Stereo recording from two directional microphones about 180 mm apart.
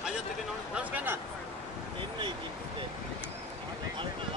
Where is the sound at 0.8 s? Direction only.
10° right (ahead or behind).